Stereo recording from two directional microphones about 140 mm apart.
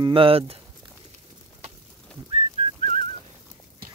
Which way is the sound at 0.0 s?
40° right (ahead or behind).